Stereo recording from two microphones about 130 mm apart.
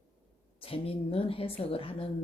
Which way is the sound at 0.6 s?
45° left (ahead or behind).